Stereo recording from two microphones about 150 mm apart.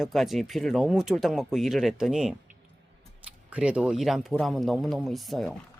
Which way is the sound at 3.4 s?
10° right (ahead or behind).